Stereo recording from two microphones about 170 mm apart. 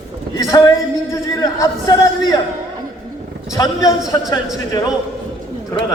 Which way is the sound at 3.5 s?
20° left (ahead or behind).